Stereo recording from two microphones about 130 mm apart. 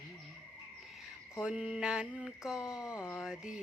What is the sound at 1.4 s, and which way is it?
Music, 5° right (ahead or behind).